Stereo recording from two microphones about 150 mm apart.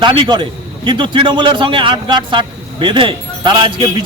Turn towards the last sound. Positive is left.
turn(degrees=-30)  # may be behind; listen again after turning